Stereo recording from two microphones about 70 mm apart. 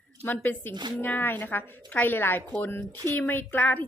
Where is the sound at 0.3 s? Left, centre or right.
Left.